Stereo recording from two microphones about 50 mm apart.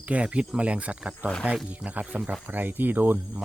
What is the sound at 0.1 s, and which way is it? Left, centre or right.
Speech, right.